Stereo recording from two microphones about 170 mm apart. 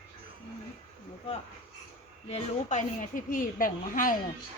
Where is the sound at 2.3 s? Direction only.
45° left (ahead or behind).